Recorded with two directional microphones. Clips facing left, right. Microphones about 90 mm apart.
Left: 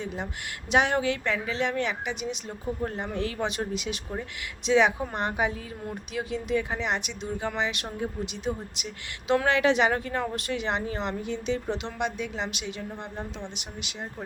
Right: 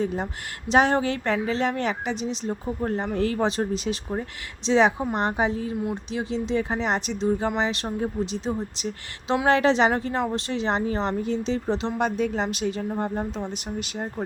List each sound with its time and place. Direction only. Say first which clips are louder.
0.7 s a woman's voice: right 4 dB; 35° right (ahead or behind)